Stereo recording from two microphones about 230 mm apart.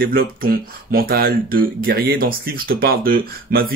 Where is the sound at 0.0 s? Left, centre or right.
Right.